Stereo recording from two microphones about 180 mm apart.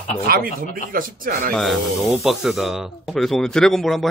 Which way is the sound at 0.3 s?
55° right (ahead or behind).